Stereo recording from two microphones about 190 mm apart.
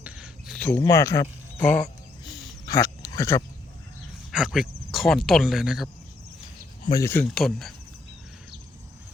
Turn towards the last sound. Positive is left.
turn(degrees=0)  # may be behind; listen again after turning